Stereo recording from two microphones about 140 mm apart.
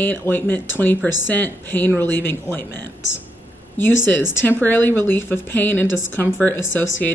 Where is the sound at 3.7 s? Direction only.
15° left (ahead or behind).